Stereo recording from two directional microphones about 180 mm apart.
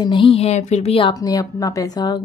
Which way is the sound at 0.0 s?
30° left (ahead or behind).